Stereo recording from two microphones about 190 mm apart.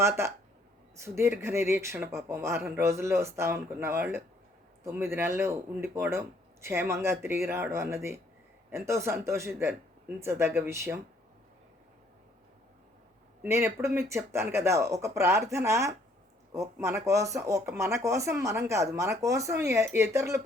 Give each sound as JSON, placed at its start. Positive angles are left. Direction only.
{"t": 0.0, "sound": "speech", "side_deg": -15}
{"t": 13.4, "sound": "speech", "side_deg": -10}